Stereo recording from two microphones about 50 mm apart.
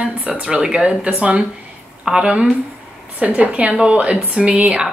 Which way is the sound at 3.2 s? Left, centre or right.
Right.